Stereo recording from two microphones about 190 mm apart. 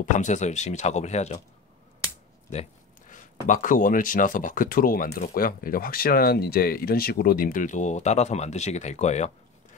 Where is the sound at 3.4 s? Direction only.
45° left (ahead or behind).